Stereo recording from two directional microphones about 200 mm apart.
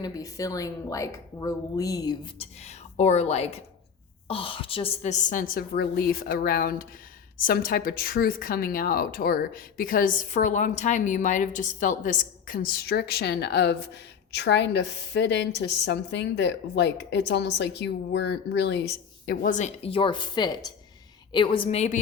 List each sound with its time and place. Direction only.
0.0 s a woman's voice: 15° left (ahead or behind); by 21.9 s 30° left (ahead or behind)